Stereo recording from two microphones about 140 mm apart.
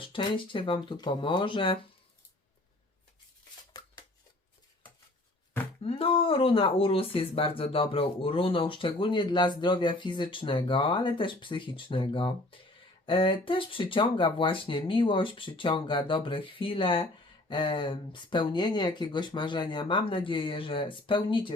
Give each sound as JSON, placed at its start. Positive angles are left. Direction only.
{"t": 0.0, "sound": "speech", "side_deg": 35}
{"t": 5.8, "sound": "speech", "side_deg": 40}